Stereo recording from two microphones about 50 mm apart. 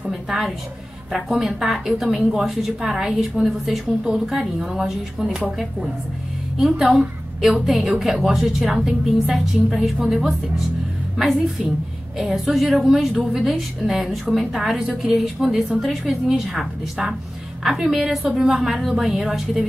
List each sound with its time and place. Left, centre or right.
0.1 s a woman's voice: centre
3.4 s a woman's voice: centre
6.6 s a woman's voice: centre
18.4 s a woman's voice: centre